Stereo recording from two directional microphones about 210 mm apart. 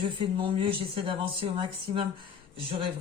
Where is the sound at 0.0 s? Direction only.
25° right (ahead or behind).